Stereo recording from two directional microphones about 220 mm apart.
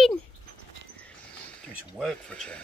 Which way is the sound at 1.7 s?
Centre (ahead or behind).